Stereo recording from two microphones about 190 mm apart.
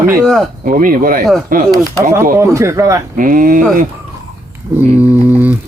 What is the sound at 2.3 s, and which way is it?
Speech, 15° right (ahead or behind).